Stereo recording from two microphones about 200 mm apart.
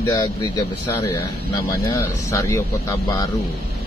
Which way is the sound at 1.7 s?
15° left (ahead or behind).